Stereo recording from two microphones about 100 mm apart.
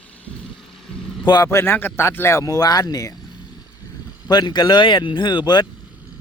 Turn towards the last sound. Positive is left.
turn(degrees=50)  # may be behind; listen again after turning